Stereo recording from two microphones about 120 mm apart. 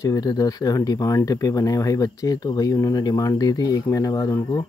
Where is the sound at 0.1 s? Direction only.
30° left (ahead or behind).